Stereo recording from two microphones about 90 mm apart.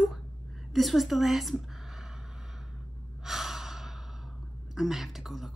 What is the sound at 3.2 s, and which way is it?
Breathing, 5° right (ahead or behind).